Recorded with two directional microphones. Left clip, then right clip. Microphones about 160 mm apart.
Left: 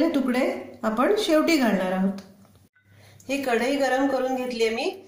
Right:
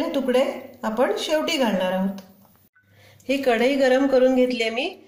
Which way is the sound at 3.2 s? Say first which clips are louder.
Right 4 dB; 70° right (ahead or behind).